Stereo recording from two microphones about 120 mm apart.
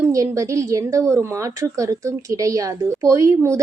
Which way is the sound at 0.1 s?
25° right (ahead or behind).